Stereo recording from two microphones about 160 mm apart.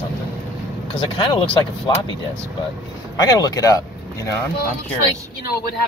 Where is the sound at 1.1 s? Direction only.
30° left (ahead or behind).